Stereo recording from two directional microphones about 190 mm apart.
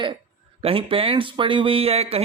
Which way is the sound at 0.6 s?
30° right (ahead or behind).